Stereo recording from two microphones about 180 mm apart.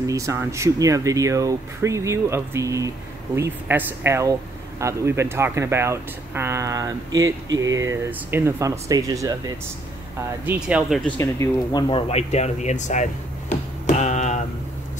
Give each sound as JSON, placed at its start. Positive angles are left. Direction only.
{"t": 0.0, "sound": "speech", "side_deg": -15}
{"t": 10.4, "sound": "speech", "side_deg": -10}
{"t": 11.1, "sound": "speech", "side_deg": 15}
{"t": 11.9, "sound": "a sound", "side_deg": 35}